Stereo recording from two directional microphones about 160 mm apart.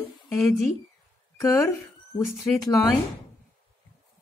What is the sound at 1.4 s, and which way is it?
Speech, 15° left (ahead or behind).